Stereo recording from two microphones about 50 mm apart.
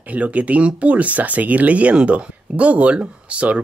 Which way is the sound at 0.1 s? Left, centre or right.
Right.